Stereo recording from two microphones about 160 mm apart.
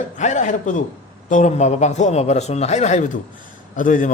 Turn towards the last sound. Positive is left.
turn(degrees=55)  # may be behind; listen again after turning